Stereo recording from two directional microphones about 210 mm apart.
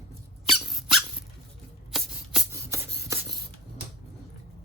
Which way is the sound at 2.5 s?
15° right (ahead or behind).